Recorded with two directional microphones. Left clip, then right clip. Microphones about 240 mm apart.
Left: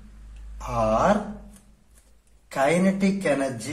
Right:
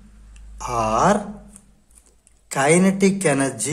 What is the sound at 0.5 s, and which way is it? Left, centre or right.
Speech, right.